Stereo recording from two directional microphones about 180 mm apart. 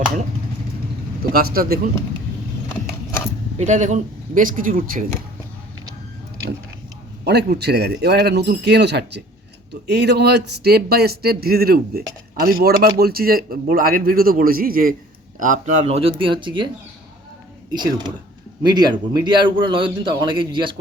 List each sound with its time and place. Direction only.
1.3 s speech: 55° right (ahead or behind)
3.6 s speech: 40° right (ahead or behind)
7.3 s speech: 65° right (ahead or behind); by 16.6 s 25° right (ahead or behind)
17.7 s a man's voice: 25° right (ahead or behind)